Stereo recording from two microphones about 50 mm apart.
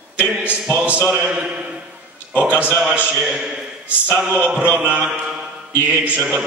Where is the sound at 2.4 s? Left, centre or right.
Right.